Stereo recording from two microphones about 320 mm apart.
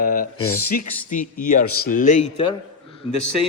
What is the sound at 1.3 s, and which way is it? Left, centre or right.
Speech, left.